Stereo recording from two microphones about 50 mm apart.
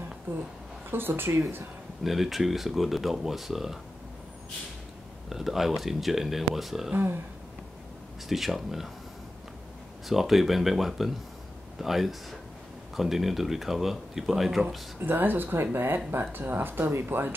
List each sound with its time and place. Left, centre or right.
0.8 s speech: right
2.0 s speech: centre
5.3 s speech: centre
8.3 s speech: centre
10.0 s speech: centre
15.0 s speech: right
15.5 s speech: right